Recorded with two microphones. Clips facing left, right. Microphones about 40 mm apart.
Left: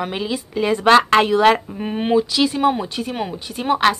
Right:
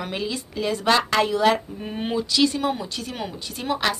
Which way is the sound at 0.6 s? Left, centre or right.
Left.